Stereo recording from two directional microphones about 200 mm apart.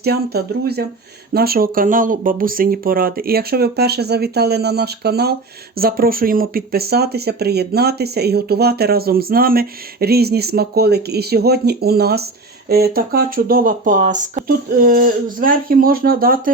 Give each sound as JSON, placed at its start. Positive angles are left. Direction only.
{"t": 0.0, "sound": "speech", "side_deg": -50}